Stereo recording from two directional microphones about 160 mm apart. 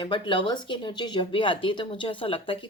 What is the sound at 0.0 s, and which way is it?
A woman's voice, 30° left (ahead or behind).